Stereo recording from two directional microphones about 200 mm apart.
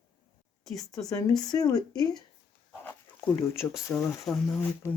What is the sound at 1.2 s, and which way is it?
Speech, 20° left (ahead or behind).